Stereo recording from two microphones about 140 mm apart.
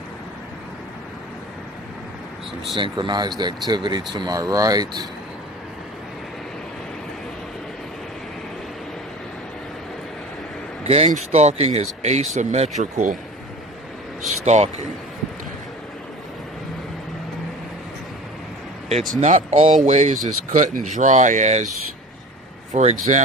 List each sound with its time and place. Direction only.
2.7 s speech: 35° right (ahead or behind)
10.8 s speech: 50° right (ahead or behind)
14.4 s speech: 55° right (ahead or behind)
19.0 s speech: 65° right (ahead or behind)
20.2 s speech: 65° right (ahead or behind)
22.7 s speech: 55° right (ahead or behind)